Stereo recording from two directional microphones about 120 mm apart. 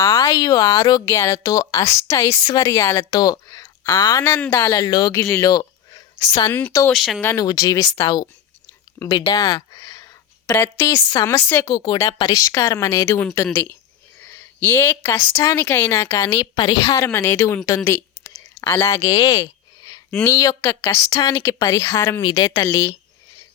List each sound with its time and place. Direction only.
0.0 s speech: 25° left (ahead or behind)
4.2 s speech: 15° left (ahead or behind)
4.8 s speech: 35° left (ahead or behind)
6.1 s a woman's voice: 45° left (ahead or behind)
6.5 s speech: 15° left (ahead or behind)
6.9 s speech: centre (ahead or behind)
7.3 s speech: 30° left (ahead or behind)
9.0 s a sound: 40° left (ahead or behind)
10.5 s speech: 20° left (ahead or behind)
18.6 s speech: 20° left (ahead or behind)
22.2 s speech: 35° left (ahead or behind)